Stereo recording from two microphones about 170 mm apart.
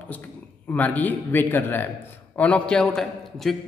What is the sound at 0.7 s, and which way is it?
A man's voice, 10° left (ahead or behind).